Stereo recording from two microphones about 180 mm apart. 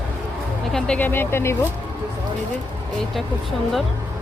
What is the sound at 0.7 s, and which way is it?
Speech, 5° left (ahead or behind).